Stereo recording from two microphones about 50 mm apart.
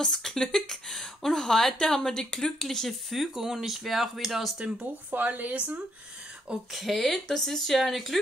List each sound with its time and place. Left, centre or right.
0.0 s speech: centre
4.6 s speech: centre
5.1 s speech: right
6.7 s speech: centre